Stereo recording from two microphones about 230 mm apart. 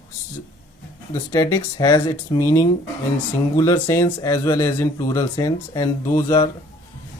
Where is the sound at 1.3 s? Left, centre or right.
Centre.